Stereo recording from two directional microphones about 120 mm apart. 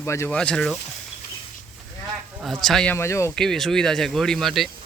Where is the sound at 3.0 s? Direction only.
25° left (ahead or behind).